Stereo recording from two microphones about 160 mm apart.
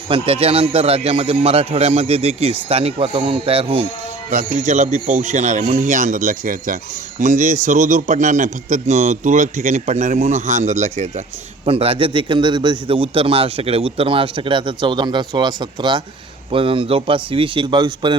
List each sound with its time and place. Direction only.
0.1 s a man's voice: 35° right (ahead or behind)
4.3 s a man's voice: 50° right (ahead or behind); by 18.2 s 25° right (ahead or behind)